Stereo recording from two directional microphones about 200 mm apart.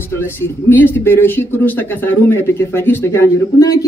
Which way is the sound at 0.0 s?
10° left (ahead or behind).